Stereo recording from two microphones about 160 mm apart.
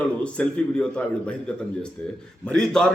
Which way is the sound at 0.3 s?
5° left (ahead or behind).